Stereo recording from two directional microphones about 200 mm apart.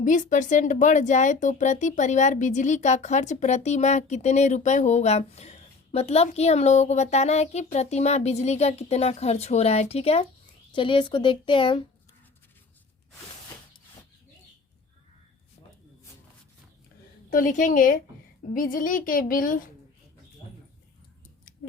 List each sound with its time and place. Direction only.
0.0 s speech: 40° left (ahead or behind); by 11.9 s 25° left (ahead or behind)
17.2 s a woman's voice: 40° left (ahead or behind)